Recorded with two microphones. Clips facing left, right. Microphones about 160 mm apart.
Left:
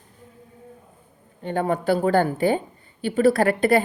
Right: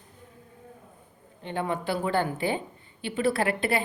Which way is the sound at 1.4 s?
45° left (ahead or behind).